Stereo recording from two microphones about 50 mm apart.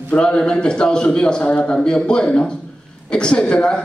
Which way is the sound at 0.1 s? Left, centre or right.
Centre.